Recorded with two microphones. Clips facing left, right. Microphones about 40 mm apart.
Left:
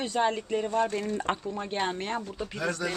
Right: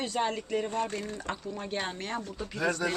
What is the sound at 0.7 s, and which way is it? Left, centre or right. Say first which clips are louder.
Speech: left 5 dB; left.